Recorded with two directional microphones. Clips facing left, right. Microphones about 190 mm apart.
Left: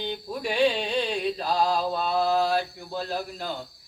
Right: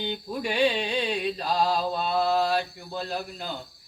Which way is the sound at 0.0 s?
Centre (ahead or behind).